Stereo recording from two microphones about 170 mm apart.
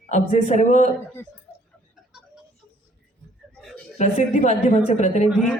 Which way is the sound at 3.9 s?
45° left (ahead or behind).